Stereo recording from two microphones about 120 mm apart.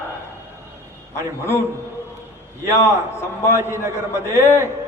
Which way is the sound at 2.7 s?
25° left (ahead or behind).